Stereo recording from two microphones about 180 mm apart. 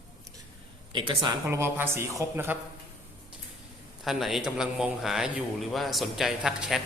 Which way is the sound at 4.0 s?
Centre (ahead or behind).